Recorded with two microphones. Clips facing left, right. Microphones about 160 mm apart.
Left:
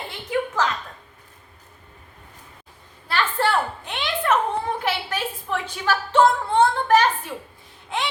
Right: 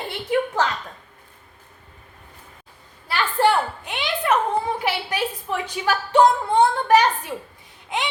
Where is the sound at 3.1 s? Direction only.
10° right (ahead or behind).